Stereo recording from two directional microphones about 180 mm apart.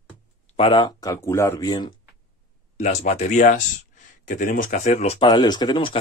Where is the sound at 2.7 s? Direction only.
40° left (ahead or behind).